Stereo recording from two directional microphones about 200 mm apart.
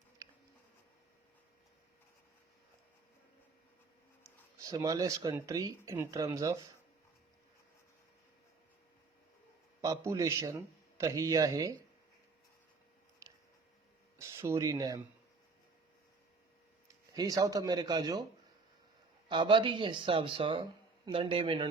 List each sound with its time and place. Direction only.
4.2 s speech: 15° right (ahead or behind)
9.8 s a man's voice: 15° right (ahead or behind)
13.2 s a sound: 15° right (ahead or behind)
14.2 s speech: 15° right (ahead or behind)
17.1 s speech: 20° right (ahead or behind)
19.3 s speech: 25° right (ahead or behind)